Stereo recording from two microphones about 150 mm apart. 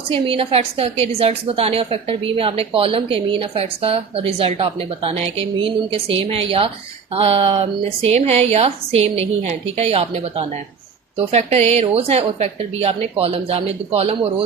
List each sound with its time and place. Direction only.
0.1 s a woman's voice: 40° right (ahead or behind)